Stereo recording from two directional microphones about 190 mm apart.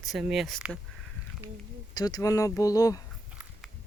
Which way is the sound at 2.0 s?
20° left (ahead or behind).